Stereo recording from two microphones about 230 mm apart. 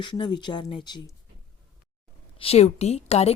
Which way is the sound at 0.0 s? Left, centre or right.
Centre.